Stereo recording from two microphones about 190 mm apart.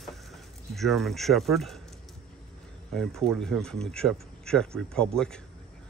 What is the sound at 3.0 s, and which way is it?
Speech, centre (ahead or behind).